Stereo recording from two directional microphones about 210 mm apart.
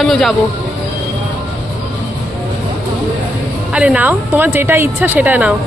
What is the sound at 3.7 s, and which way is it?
A woman's voice, 5° right (ahead or behind).